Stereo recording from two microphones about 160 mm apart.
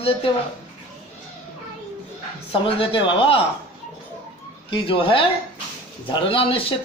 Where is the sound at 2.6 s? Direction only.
35° left (ahead or behind).